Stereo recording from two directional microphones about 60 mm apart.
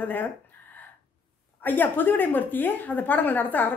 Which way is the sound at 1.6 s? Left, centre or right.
Left.